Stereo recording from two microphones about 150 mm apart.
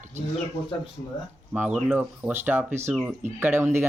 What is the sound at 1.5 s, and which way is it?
Speech, 10° right (ahead or behind).